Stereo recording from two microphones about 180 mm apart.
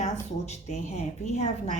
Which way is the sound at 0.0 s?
35° left (ahead or behind).